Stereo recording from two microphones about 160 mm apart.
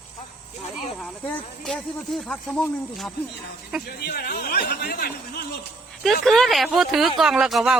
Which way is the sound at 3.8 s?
75° left (ahead or behind).